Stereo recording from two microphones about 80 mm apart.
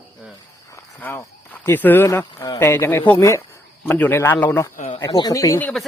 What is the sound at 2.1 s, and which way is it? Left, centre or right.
Speech, left.